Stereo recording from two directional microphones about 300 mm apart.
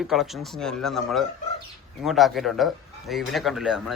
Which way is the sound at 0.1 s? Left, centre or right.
Centre.